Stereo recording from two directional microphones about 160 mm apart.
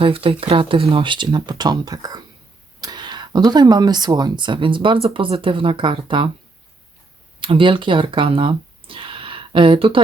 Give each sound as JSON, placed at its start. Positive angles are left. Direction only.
{"t": 0.0, "sound": "speech", "side_deg": -35}
{"t": 7.3, "sound": "speech", "side_deg": -30}